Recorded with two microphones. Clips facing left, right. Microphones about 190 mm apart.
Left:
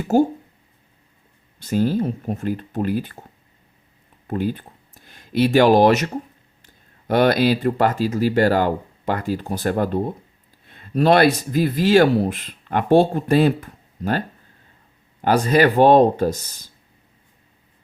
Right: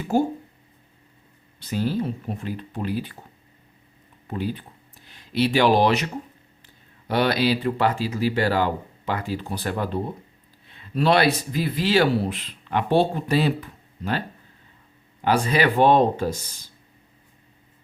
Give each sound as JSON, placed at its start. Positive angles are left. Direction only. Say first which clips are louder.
{"t": 0.0, "sound": "speech", "louder": "left 5 dB", "side_deg": 45}
{"t": 1.5, "sound": "speech", "louder": "left 5 dB", "side_deg": 45}
{"t": 4.3, "sound": "speech", "louder": "left 5 dB", "side_deg": 50}
{"t": 7.1, "sound": "speech", "louder": "left 5 dB", "side_deg": 50}
{"t": 10.7, "sound": "a sound", "louder": "left 4 dB", "side_deg": 45}
{"t": 11.3, "sound": "speech", "louder": "left 6 dB", "side_deg": 45}